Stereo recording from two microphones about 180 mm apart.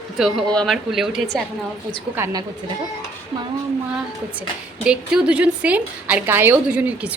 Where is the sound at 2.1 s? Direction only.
15° right (ahead or behind).